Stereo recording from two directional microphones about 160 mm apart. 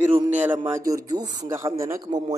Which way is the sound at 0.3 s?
10° right (ahead or behind).